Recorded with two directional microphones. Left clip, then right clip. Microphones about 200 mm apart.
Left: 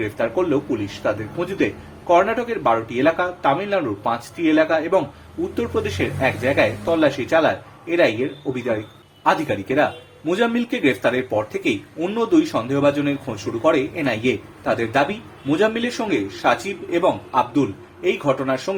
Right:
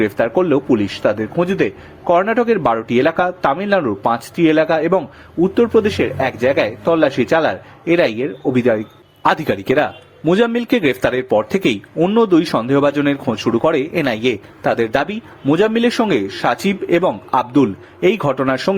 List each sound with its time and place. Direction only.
0.0 s a man's voice: 45° right (ahead or behind)